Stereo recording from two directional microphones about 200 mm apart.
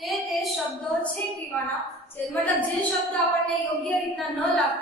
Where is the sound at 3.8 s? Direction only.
Centre (ahead or behind).